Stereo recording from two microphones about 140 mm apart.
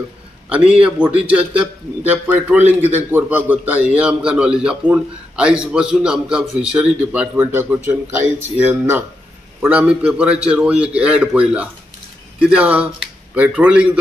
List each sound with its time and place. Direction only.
0.5 s a man's voice: 10° right (ahead or behind)